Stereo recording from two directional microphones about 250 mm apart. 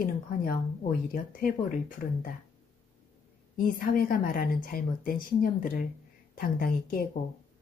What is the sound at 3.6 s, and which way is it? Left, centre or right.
A woman's voice, left.